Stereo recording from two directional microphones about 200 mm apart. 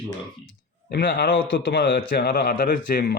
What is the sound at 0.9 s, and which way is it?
A man's voice, 50° left (ahead or behind).